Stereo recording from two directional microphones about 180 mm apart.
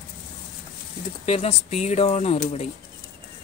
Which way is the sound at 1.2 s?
35° left (ahead or behind).